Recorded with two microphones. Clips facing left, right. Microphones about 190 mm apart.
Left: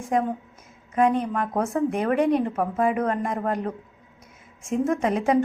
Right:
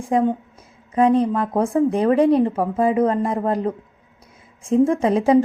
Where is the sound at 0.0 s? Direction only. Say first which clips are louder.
Right 5 dB; 30° right (ahead or behind).